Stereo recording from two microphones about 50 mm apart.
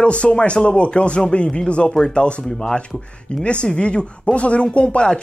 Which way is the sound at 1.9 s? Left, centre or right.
Centre.